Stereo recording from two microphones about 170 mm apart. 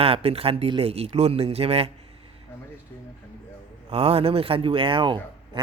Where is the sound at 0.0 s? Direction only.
35° right (ahead or behind).